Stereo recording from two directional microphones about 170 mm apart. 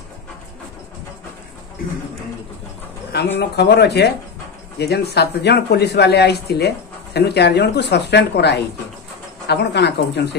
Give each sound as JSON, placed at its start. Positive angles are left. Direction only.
{"t": 3.3, "sound": "speech", "side_deg": 75}